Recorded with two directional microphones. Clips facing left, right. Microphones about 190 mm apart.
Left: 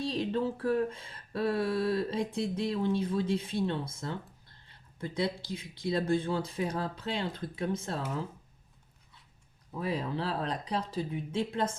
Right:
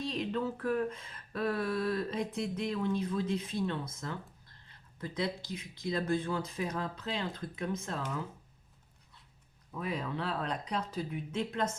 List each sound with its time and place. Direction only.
0.0 s speech: 35° left (ahead or behind)
9.7 s speech: 30° left (ahead or behind)